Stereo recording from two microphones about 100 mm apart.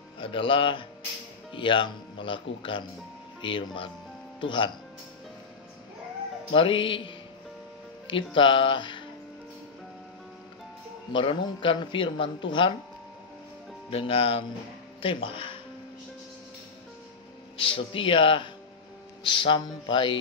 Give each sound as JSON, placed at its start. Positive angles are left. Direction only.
{"t": 0.2, "sound": "a man's voice", "side_deg": 60}
{"t": 6.5, "sound": "a man's voice", "side_deg": 60}
{"t": 11.1, "sound": "a man's voice", "side_deg": 60}
{"t": 13.8, "sound": "speech", "side_deg": 65}
{"t": 17.6, "sound": "a man's voice", "side_deg": 65}